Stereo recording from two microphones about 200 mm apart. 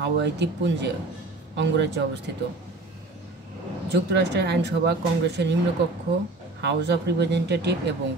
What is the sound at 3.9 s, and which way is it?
Speech, 55° right (ahead or behind).